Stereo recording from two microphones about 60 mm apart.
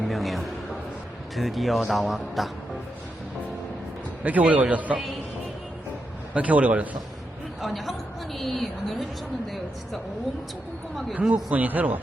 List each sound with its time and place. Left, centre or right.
0.1 s a sound: centre
1.4 s a woman's voice: centre
4.2 s a man's voice: right
6.3 s a man's voice: right
7.6 s a woman's voice: centre
11.1 s a man's voice: right